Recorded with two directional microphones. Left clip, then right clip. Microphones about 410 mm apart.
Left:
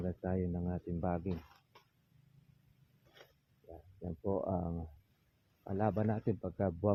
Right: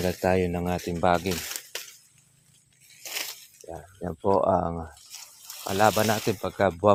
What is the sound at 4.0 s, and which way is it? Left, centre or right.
Speech, right.